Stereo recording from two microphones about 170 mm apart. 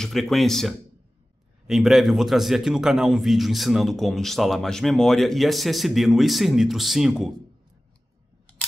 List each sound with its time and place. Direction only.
0.0 s a man's voice: centre (ahead or behind)